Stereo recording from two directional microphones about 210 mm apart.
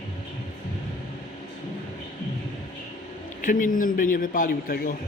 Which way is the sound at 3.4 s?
40° left (ahead or behind).